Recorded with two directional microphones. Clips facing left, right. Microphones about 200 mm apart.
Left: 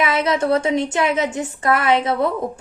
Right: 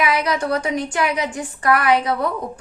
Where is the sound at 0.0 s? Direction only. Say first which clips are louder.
Left 2 dB; 25° left (ahead or behind).